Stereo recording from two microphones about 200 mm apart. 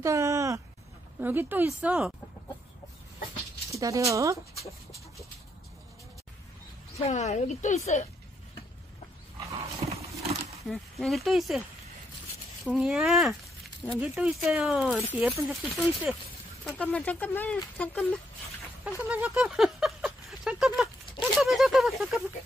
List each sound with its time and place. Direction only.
0.0 s speech: 15° right (ahead or behind)
3.7 s speech: 15° right (ahead or behind)
7.0 s a woman's voice: 35° left (ahead or behind)
9.8 s horse: 30° right (ahead or behind)
10.7 s speech: centre (ahead or behind)
12.6 s speech: 5° right (ahead or behind)
18.9 s a sound: 10° right (ahead or behind)